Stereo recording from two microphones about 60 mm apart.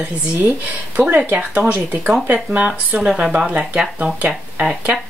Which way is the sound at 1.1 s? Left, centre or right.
Right.